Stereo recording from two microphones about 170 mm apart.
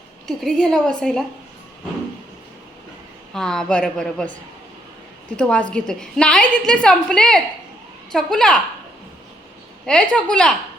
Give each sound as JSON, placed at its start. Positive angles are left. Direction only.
{"t": 0.6, "sound": "a woman's voice", "side_deg": 5}
{"t": 3.3, "sound": "a woman's voice", "side_deg": 5}
{"t": 5.4, "sound": "a woman's voice", "side_deg": 5}
{"t": 9.8, "sound": "a woman's voice", "side_deg": 5}